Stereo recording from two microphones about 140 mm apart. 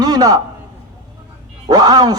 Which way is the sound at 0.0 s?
30° right (ahead or behind).